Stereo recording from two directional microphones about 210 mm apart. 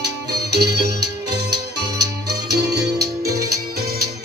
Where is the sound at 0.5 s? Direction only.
50° right (ahead or behind).